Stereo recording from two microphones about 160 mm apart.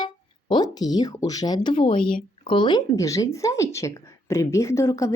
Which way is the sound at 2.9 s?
20° left (ahead or behind).